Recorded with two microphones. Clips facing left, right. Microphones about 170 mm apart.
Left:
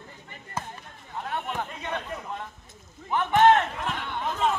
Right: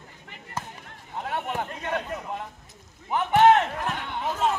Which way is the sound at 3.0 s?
10° right (ahead or behind).